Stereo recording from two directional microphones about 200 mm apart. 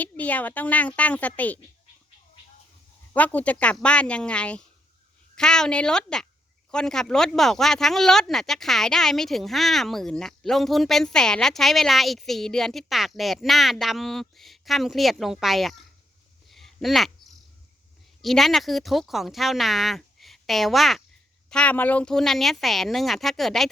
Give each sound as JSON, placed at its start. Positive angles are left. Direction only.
{"t": 0.0, "sound": "a woman's voice", "side_deg": 5}
{"t": 3.1, "sound": "a woman's voice", "side_deg": 10}
{"t": 16.5, "sound": "a sound", "side_deg": 0}
{"t": 18.2, "sound": "speech", "side_deg": 0}